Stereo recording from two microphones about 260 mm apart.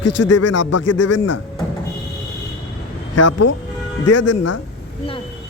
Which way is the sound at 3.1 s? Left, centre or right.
Left.